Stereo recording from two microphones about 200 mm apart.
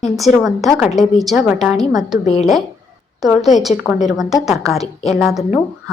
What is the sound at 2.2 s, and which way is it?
Speech, 35° left (ahead or behind).